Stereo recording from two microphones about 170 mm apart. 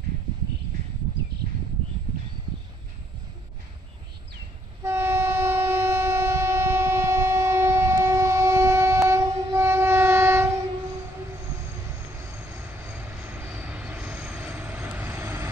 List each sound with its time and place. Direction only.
4.8 s train: 15° right (ahead or behind)
12.4 s vehicle: 10° right (ahead or behind)